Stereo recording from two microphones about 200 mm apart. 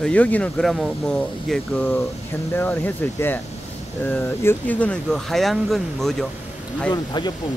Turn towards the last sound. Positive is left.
turn(degrees=20)  # may be behind; listen again after turning